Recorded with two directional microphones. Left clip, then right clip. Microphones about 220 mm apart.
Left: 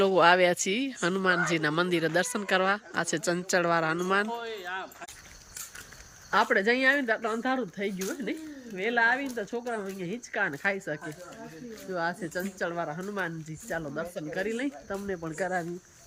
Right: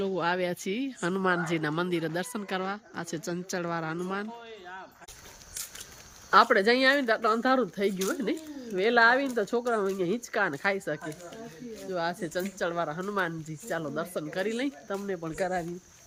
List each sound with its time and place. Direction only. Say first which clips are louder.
0.0 s speech: left 8 dB; 5° right (ahead or behind)
6.3 s speech: right 3 dB; 10° right (ahead or behind)